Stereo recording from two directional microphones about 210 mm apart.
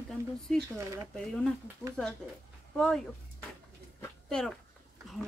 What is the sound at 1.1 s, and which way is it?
Speech, 5° left (ahead or behind).